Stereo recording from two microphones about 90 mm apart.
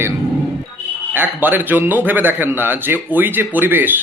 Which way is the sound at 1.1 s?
20° right (ahead or behind).